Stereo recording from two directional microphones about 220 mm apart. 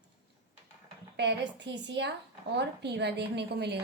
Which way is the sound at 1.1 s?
50° right (ahead or behind).